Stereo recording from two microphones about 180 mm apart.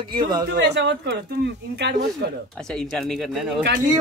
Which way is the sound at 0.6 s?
75° right (ahead or behind).